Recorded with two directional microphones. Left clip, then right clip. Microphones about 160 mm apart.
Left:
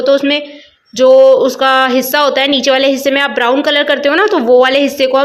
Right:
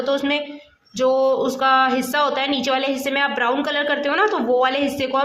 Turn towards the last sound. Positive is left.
turn(degrees=25)  # may be behind; listen again after turning